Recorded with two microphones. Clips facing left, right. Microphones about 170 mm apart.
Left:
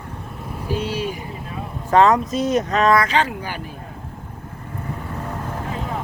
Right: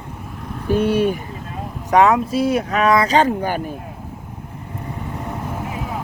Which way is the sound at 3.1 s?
45° right (ahead or behind).